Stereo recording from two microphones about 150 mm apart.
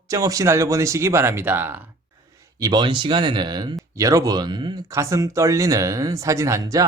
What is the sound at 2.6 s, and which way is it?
Speech, 30° right (ahead or behind).